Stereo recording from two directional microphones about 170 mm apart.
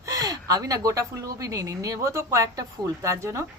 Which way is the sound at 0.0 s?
20° right (ahead or behind).